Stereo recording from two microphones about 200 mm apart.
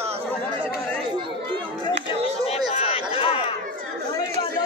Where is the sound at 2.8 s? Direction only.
30° left (ahead or behind).